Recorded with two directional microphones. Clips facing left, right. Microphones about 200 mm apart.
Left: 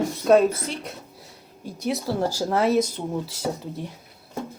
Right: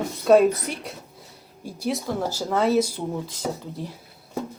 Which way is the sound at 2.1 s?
10° left (ahead or behind).